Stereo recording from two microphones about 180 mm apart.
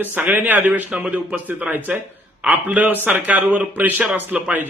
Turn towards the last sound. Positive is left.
turn(degrees=-5)  # may be behind; listen again after turning